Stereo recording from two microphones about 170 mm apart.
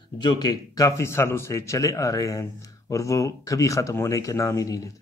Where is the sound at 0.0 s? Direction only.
25° left (ahead or behind).